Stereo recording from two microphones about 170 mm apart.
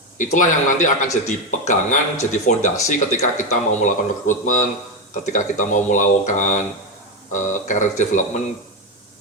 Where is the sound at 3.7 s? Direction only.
50° left (ahead or behind).